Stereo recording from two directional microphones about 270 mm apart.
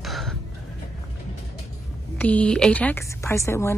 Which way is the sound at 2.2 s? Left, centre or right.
Centre.